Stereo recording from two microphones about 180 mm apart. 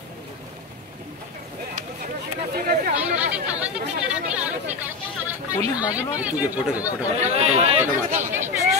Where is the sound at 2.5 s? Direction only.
50° right (ahead or behind).